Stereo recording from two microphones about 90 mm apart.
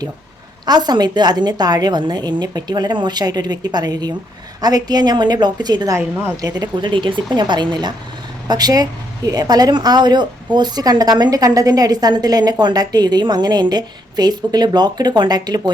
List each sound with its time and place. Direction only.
0.6 s a woman's voice: 50° right (ahead or behind)